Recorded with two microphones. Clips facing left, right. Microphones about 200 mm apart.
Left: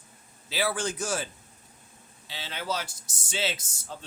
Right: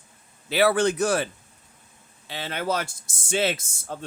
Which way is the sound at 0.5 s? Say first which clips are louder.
Right 9 dB; 65° right (ahead or behind).